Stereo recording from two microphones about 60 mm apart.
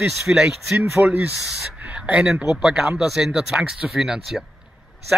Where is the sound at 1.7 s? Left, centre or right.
Right; by 4.4 s centre.